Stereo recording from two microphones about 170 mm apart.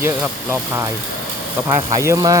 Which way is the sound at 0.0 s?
15° right (ahead or behind).